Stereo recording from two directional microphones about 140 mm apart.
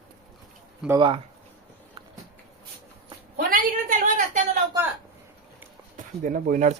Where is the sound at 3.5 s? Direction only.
70° right (ahead or behind).